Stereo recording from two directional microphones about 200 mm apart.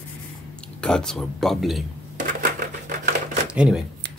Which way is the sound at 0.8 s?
5° left (ahead or behind).